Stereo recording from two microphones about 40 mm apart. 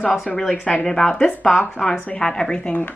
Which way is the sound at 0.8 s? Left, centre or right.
Centre.